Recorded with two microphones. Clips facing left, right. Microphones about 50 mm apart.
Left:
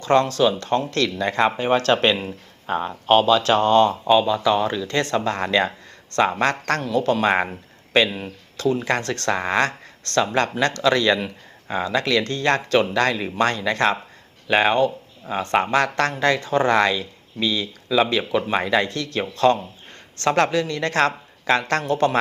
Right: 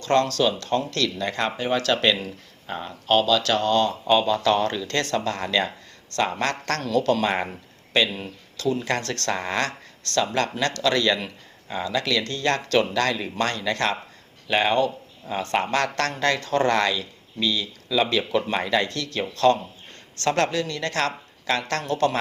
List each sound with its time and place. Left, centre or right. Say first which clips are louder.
0.0 s speech: left 3 dB; left
4.0 s speech: left 2 dB; centre
5.0 s speech: left 3 dB; left
17.8 s speech: left 3 dB; centre